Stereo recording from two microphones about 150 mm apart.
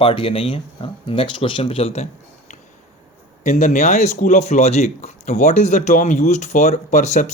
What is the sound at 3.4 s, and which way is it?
Speech, 55° left (ahead or behind).